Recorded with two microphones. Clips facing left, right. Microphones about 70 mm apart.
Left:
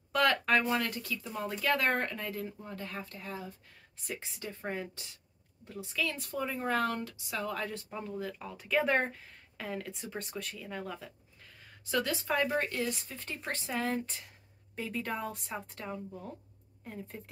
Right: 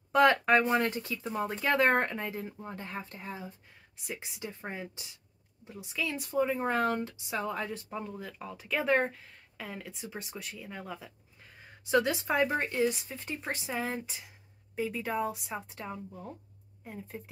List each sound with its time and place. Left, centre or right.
0.1 s speech: right
7.7 s speech: centre
11.4 s speech: right